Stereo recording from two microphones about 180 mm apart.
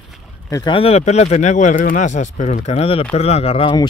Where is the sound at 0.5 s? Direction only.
25° left (ahead or behind).